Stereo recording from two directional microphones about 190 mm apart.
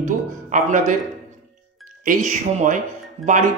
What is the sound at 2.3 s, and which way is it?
Speech, 40° right (ahead or behind).